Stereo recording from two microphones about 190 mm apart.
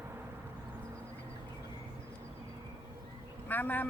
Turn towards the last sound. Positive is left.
turn(degrees=10)  # may be behind; listen again after turning